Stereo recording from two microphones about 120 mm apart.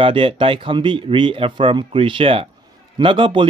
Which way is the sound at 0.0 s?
50° right (ahead or behind).